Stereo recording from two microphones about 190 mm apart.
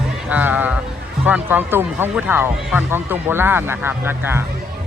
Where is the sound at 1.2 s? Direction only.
10° right (ahead or behind).